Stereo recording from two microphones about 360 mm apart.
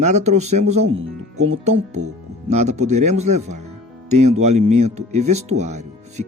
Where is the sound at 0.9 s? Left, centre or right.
Right.